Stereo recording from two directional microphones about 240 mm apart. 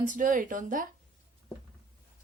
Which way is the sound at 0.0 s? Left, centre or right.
Right.